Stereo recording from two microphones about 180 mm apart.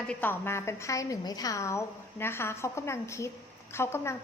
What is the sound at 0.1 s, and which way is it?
A woman's voice, 10° left (ahead or behind).